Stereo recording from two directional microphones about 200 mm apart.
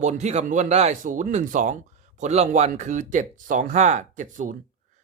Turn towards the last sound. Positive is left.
turn(degrees=-40)  # may be behind; listen again after turning